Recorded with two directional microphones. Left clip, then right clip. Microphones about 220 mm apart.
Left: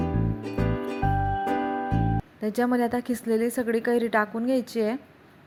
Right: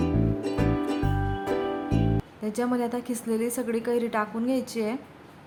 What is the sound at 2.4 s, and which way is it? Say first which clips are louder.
A woman's voice: left 3 dB; 20° left (ahead or behind).